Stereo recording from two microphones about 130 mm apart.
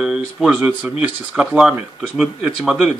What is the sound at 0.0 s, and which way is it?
Speech, 5° right (ahead or behind).